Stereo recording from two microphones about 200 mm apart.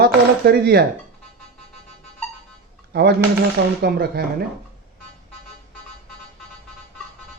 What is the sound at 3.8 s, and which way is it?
Speech, 50° right (ahead or behind).